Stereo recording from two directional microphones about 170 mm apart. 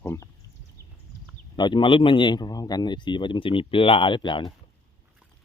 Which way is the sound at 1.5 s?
25° left (ahead or behind).